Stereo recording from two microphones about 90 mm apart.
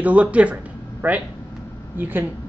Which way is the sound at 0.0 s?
15° right (ahead or behind).